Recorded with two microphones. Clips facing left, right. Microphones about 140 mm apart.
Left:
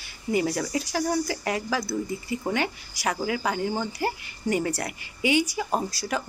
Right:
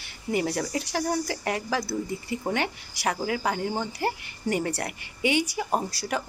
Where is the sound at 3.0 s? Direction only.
35° right (ahead or behind).